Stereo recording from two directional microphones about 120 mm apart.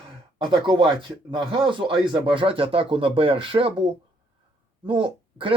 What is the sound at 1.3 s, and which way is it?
Speech, 45° right (ahead or behind).